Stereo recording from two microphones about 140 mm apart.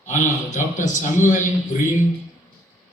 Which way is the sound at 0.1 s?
60° left (ahead or behind).